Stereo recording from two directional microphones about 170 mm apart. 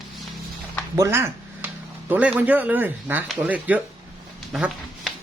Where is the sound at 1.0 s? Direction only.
15° right (ahead or behind).